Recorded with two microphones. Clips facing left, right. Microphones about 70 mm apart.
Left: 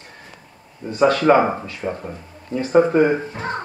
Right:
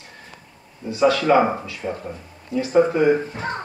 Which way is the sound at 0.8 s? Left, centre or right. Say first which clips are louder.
Left 2 dB; left.